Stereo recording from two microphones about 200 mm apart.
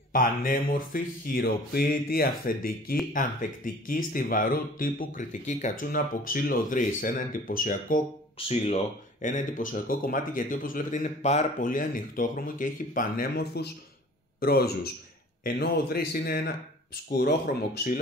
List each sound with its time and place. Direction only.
0.1 s speech: 45° left (ahead or behind)
8.4 s speech: 30° left (ahead or behind); by 17.6 s 50° left (ahead or behind)